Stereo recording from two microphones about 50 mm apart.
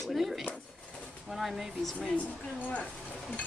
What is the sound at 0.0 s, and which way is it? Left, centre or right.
Speech, centre.